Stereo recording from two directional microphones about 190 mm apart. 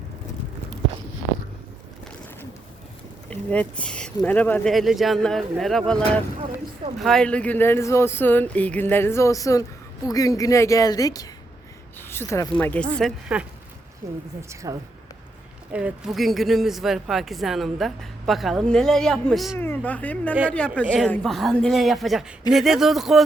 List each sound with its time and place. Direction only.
3.2 s speech: 5° left (ahead or behind)
14.0 s speech: 15° right (ahead or behind)
15.7 s speech: 5° right (ahead or behind)